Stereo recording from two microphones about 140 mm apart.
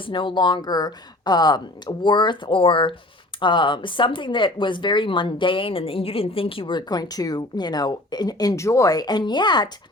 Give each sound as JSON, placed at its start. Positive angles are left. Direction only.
{"t": 0.1, "sound": "speech", "side_deg": 35}